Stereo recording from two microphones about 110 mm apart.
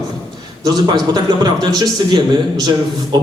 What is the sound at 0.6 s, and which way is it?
Speech, 40° right (ahead or behind).